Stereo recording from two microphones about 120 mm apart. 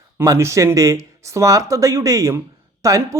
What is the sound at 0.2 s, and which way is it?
Speech, 25° right (ahead or behind).